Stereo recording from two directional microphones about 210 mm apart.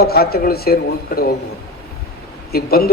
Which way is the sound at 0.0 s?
45° left (ahead or behind).